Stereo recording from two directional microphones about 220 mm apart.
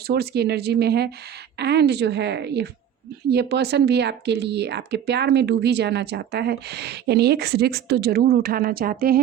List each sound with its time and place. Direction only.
0.1 s speech: 45° right (ahead or behind)